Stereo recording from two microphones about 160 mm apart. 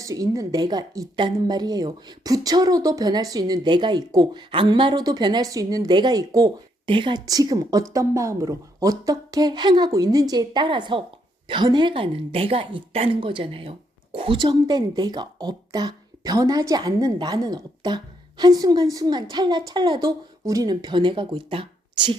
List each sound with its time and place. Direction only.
0.0 s a woman's voice: 20° right (ahead or behind)